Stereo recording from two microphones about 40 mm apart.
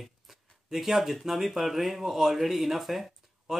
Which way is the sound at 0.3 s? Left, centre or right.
Centre.